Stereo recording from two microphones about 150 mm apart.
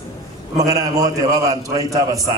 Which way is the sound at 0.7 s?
25° right (ahead or behind).